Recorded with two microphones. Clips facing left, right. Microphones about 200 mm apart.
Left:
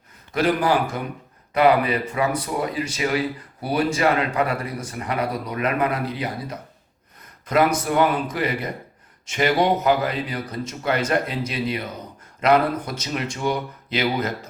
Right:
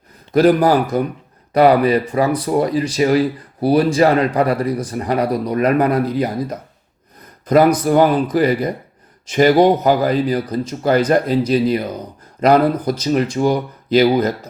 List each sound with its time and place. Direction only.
0.3 s speech: 40° right (ahead or behind)